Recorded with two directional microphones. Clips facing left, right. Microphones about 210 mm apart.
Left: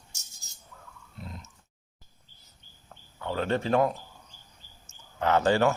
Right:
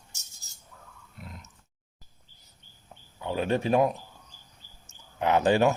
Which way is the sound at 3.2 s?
15° right (ahead or behind).